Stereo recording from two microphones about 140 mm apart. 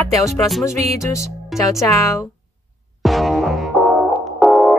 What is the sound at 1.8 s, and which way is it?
Speech, 25° left (ahead or behind).